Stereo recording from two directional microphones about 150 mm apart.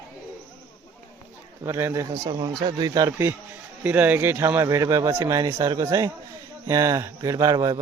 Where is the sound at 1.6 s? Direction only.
15° right (ahead or behind).